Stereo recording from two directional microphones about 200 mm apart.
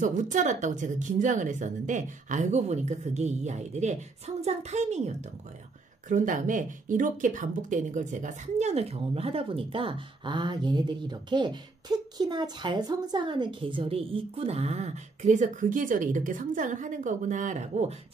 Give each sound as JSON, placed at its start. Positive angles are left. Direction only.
{"t": 0.0, "sound": "speech", "side_deg": -40}